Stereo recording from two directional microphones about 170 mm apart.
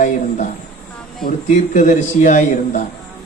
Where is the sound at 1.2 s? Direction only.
45° left (ahead or behind).